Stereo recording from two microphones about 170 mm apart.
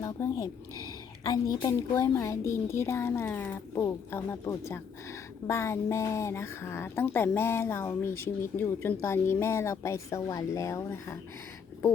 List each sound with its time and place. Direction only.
0.0 s a woman's voice: 20° left (ahead or behind)